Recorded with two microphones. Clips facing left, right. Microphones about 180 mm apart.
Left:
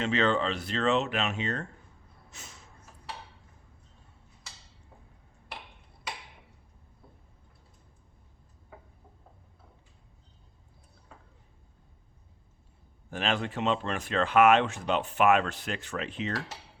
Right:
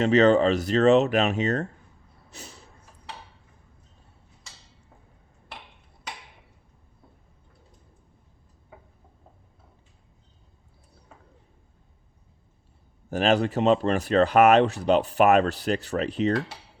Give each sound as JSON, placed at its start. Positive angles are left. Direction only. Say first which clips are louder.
{"t": 0.0, "sound": "speech", "louder": "right 9 dB", "side_deg": -40}
{"t": 2.3, "sound": "a sound", "louder": "right 6 dB", "side_deg": -35}
{"t": 13.1, "sound": "speech", "louder": "right 9 dB", "side_deg": -40}